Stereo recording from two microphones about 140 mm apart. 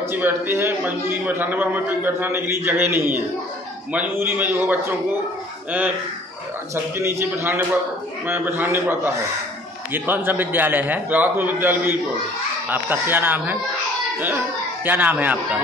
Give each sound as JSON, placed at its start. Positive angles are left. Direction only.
{"t": 0.0, "sound": "a man's voice", "side_deg": -20}
{"t": 14.9, "sound": "a man's voice", "side_deg": -10}